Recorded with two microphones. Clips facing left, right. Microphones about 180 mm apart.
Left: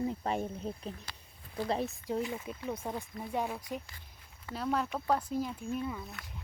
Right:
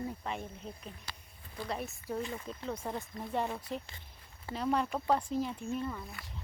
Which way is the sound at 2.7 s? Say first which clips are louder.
Even; centre (ahead or behind).